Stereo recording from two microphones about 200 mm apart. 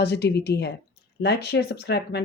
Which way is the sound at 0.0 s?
55° left (ahead or behind).